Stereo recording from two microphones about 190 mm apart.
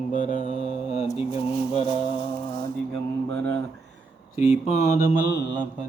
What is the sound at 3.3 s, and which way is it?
Speech, 10° left (ahead or behind).